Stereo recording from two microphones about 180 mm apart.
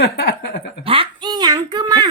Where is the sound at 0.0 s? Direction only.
65° left (ahead or behind).